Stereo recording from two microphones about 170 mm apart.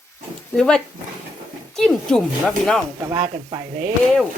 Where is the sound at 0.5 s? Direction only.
5° left (ahead or behind).